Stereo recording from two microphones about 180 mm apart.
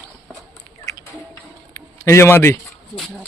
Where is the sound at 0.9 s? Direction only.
20° left (ahead or behind).